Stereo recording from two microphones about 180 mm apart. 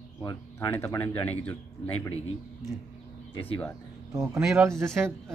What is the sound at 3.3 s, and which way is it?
Speech, 30° left (ahead or behind).